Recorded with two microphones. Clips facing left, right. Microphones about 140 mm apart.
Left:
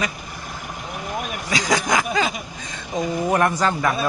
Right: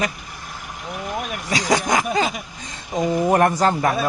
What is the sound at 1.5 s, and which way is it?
Speech, 30° right (ahead or behind).